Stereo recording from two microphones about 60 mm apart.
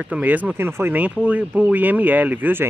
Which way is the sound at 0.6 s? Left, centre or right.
Right.